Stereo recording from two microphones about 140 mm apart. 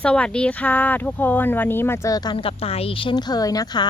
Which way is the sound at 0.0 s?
5° left (ahead or behind).